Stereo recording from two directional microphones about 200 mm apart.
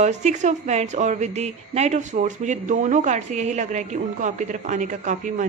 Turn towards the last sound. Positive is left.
turn(degrees=-35)  # may be behind; listen again after turning